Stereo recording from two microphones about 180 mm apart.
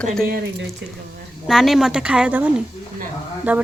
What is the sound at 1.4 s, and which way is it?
Speech, centre (ahead or behind).